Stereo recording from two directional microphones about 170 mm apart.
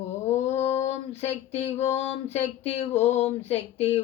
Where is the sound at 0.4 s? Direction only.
40° left (ahead or behind).